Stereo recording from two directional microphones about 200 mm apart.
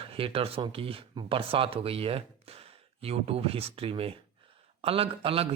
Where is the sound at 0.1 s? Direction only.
30° right (ahead or behind).